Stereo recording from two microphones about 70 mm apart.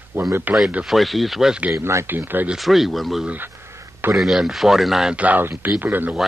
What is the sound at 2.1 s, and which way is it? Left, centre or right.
Speech, right.